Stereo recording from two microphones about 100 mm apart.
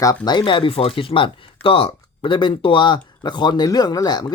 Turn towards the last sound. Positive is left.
turn(degrees=45)  # may be behind; listen again after turning